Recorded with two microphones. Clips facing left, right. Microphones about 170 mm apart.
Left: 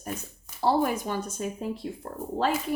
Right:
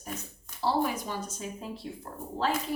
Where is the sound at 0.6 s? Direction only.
55° left (ahead or behind).